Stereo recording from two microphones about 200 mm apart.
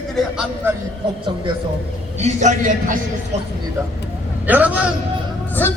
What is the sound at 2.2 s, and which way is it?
Speech, 35° right (ahead or behind).